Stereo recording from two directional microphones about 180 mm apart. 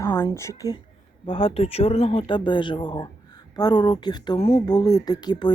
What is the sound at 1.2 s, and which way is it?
Speech, 30° left (ahead or behind).